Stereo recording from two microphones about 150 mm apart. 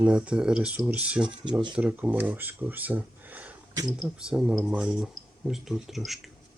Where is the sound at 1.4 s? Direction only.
30° right (ahead or behind).